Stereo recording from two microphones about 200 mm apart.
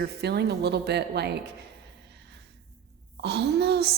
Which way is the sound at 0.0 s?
55° right (ahead or behind).